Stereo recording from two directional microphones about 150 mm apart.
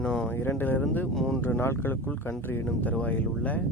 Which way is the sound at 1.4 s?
15° left (ahead or behind).